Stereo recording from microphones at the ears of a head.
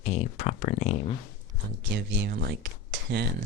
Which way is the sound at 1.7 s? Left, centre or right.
Right.